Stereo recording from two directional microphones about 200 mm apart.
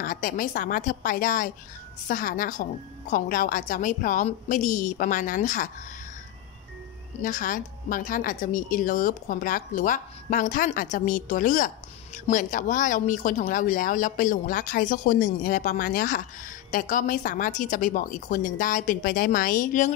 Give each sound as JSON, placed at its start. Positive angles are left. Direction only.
{"t": 0.0, "sound": "a woman's voice", "side_deg": 45}
{"t": 7.2, "sound": "speech", "side_deg": 40}